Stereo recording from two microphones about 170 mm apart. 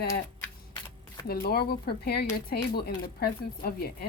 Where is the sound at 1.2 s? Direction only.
65° left (ahead or behind).